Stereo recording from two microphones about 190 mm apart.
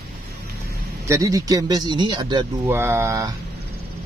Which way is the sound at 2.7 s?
15° right (ahead or behind).